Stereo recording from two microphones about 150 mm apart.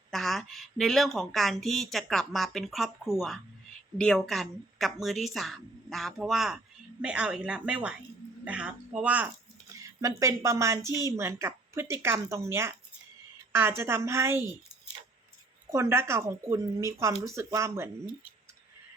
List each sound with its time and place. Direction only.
0.1 s speech: centre (ahead or behind)
10.0 s a woman's voice: 20° right (ahead or behind)
15.7 s a woman's voice: 20° right (ahead or behind)